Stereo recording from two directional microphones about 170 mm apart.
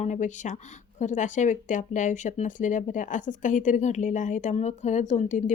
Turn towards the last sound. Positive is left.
turn(degrees=50)  # may be behind; listen again after turning